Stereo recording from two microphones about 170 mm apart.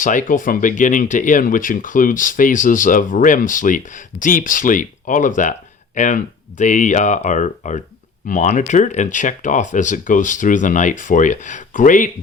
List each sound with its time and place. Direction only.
0.0 s speech: 50° left (ahead or behind)